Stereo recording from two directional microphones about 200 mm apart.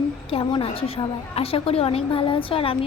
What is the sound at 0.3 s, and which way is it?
A woman's voice, 25° left (ahead or behind).